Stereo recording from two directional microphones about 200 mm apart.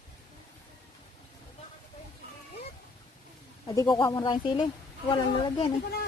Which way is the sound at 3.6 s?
20° left (ahead or behind).